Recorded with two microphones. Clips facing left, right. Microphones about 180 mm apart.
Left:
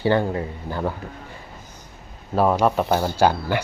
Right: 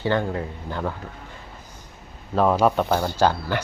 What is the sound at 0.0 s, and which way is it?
Speech, 10° left (ahead or behind).